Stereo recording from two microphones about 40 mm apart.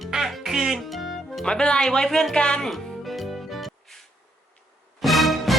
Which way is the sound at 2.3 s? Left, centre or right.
Left.